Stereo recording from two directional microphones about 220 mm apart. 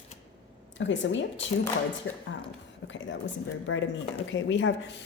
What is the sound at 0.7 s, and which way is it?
Speech, 55° left (ahead or behind).